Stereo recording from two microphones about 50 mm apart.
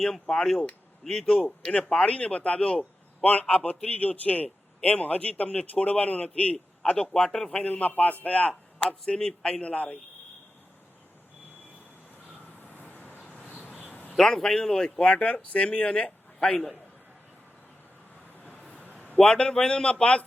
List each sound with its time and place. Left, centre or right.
0.0 s speech: centre
2.0 s a man's voice: left
6.9 s speech: centre
7.5 s a man's voice: left
12.7 s vehicle: left
13.9 s a sound: left
14.2 s a man's voice: centre
16.0 s a sound: left
18.7 s a sound: left
19.1 s a man's voice: centre